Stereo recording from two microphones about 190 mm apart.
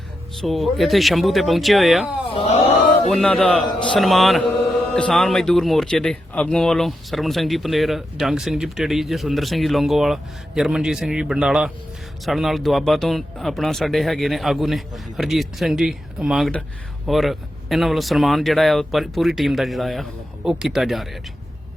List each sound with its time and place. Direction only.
0.4 s speech: centre (ahead or behind)
2.3 s speech: 30° left (ahead or behind)
3.1 s speech: centre (ahead or behind)